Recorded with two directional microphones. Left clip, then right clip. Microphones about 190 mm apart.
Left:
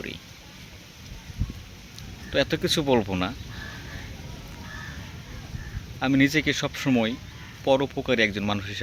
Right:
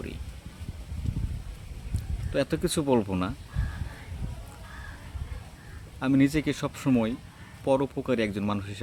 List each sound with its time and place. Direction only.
2.3 s speech: 5° right (ahead or behind)
6.0 s speech: 5° right (ahead or behind)